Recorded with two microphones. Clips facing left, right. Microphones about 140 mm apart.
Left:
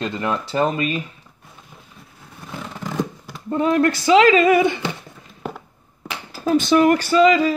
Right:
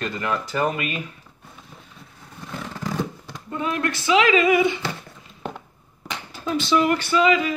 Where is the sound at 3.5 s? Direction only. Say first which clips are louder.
Left 8 dB; 35° left (ahead or behind).